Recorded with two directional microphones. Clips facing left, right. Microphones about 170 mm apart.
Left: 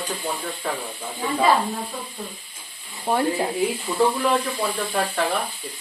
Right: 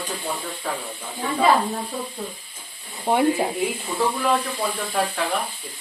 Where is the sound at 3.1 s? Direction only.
10° right (ahead or behind).